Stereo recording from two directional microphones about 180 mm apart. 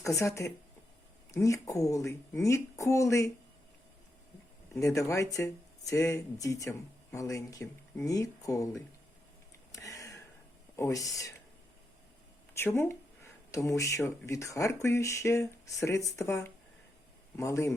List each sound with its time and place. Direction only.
0.0 s speech: 15° left (ahead or behind)
4.8 s speech: 15° left (ahead or behind)
9.7 s a sound: 20° left (ahead or behind)
10.8 s speech: 15° left (ahead or behind)
12.5 s speech: 15° left (ahead or behind)